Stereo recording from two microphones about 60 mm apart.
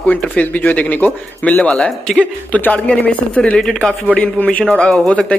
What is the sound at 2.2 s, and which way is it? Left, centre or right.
Speech, left.